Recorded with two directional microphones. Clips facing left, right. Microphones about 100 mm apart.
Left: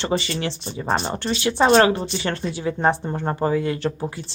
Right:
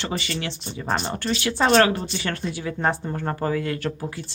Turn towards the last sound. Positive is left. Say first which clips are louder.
# left 3 dB
turn(degrees=25)  # may be behind; listen again after turning